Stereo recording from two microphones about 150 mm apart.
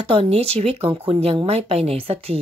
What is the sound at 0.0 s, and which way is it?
Speech, 40° right (ahead or behind).